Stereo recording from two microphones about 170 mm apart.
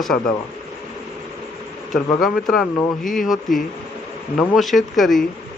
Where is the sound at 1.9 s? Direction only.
Centre (ahead or behind).